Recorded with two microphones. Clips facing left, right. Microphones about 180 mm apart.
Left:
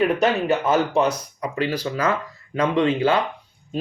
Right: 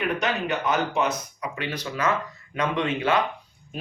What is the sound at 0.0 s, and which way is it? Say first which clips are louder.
Speech: left 7 dB; 35° left (ahead or behind).